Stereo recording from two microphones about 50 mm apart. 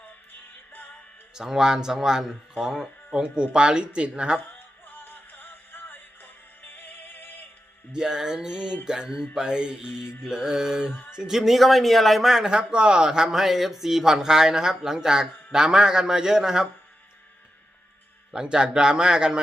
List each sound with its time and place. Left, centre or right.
1.4 s speech: centre
4.9 s music: left
7.9 s a man's voice: centre
12.5 s speech: centre
18.3 s speech: centre